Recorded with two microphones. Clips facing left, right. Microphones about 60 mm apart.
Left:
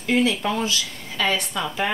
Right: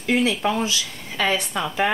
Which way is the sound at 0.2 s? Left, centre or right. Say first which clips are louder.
Right 1 dB; right.